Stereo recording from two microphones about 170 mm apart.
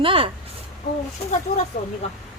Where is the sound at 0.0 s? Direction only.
30° right (ahead or behind).